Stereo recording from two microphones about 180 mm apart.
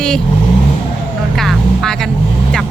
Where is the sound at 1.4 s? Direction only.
Centre (ahead or behind).